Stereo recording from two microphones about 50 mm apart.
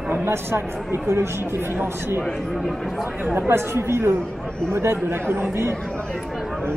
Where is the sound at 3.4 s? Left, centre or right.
Right.